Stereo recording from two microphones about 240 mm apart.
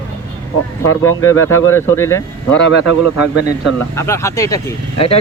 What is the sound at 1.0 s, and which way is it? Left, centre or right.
Speech, centre.